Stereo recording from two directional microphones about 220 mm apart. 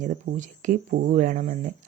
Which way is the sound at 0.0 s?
35° right (ahead or behind).